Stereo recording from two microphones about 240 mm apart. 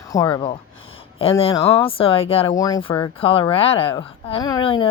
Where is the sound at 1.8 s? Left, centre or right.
Left.